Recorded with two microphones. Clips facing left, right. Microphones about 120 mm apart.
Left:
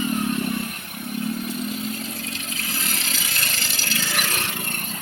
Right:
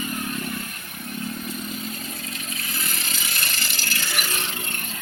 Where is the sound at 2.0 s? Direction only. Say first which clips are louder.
Left 3 dB; 75° left (ahead or behind).